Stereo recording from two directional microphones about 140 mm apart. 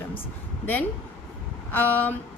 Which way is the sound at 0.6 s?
10° left (ahead or behind).